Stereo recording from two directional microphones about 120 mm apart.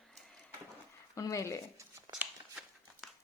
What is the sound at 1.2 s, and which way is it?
Speech, 25° left (ahead or behind).